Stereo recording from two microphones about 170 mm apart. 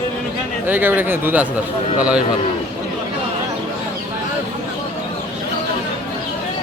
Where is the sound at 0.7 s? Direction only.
10° right (ahead or behind).